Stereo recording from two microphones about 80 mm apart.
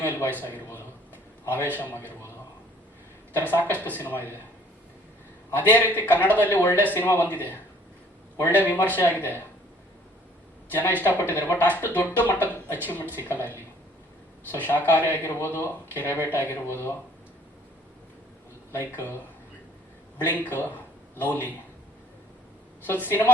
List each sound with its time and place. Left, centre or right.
0.0 s a man's voice: left
3.5 s speech: left
5.5 s speech: left
10.7 s speech: left
18.7 s speech: left
20.2 s speech: left
22.9 s speech: left